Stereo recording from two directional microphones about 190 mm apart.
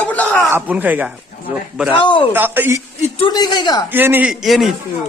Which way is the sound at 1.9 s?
25° left (ahead or behind).